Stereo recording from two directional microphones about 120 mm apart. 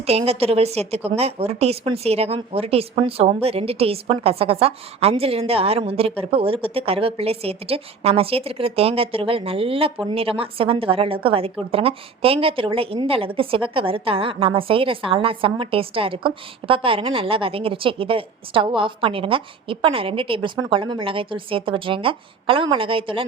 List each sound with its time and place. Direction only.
0.0 s a woman's voice: 60° right (ahead or behind)